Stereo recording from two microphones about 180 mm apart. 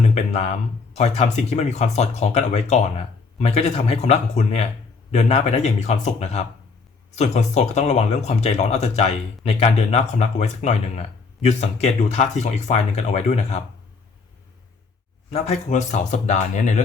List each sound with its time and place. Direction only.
0.9 s speech: 35° left (ahead or behind)
15.3 s speech: 35° left (ahead or behind)